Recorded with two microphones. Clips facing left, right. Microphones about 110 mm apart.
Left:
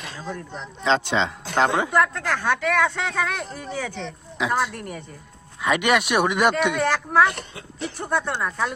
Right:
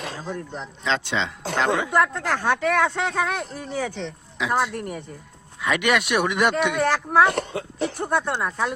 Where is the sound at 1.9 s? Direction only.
20° right (ahead or behind).